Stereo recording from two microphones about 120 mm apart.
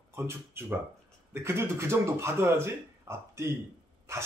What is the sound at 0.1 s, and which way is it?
A man's voice, 20° right (ahead or behind).